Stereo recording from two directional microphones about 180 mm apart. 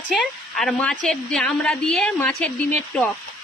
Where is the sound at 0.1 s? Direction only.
Centre (ahead or behind).